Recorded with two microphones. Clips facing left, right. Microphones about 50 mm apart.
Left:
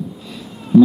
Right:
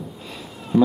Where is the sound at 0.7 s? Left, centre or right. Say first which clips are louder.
Left 7 dB; centre.